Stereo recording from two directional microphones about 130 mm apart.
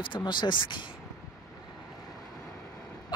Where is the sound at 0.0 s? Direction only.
40° left (ahead or behind).